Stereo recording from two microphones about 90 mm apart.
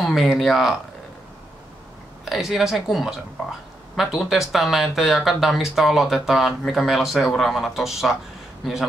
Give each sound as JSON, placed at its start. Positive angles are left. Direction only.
{"t": 0.0, "sound": "speech", "side_deg": 0}
{"t": 2.2, "sound": "speech", "side_deg": -5}